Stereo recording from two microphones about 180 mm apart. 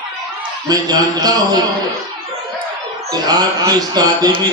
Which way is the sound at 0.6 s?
20° right (ahead or behind).